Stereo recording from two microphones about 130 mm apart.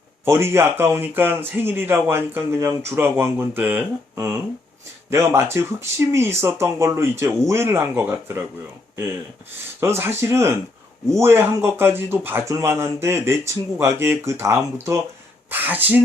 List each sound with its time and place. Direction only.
0.3 s speech: 20° right (ahead or behind)
9.8 s speech: 20° right (ahead or behind)